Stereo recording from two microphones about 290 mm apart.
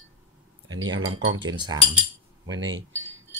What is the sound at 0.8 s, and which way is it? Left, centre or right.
Speech, right.